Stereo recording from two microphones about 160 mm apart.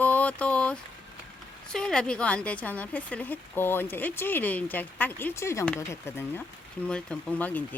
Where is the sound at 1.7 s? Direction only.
5° left (ahead or behind).